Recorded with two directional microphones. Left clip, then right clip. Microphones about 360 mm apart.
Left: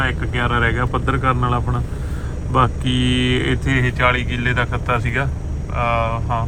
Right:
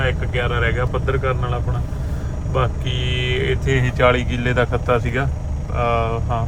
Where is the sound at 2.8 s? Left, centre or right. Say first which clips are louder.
Left 4 dB; centre.